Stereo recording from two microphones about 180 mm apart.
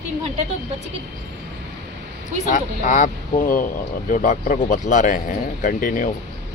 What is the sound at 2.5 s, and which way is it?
Speech, 45° left (ahead or behind).